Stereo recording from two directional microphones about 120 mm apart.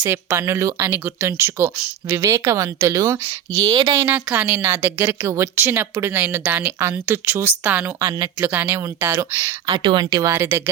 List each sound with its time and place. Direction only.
0.0 s speech: 20° right (ahead or behind)
3.9 s a woman's voice: 15° right (ahead or behind)
8.0 s speech: 25° right (ahead or behind)
8.4 s speech: 15° right (ahead or behind)
9.6 s speech: 40° right (ahead or behind); by 10.6 s 20° right (ahead or behind)